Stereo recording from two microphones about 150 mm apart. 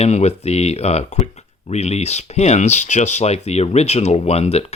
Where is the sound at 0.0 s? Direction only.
45° left (ahead or behind).